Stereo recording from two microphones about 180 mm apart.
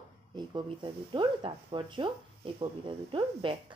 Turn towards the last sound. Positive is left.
turn(degrees=-25)  # may be behind; listen again after turning